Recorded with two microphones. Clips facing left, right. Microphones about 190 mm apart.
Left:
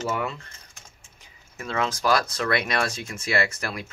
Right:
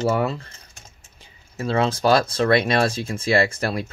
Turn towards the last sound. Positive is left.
turn(degrees=-30)  # may be behind; listen again after turning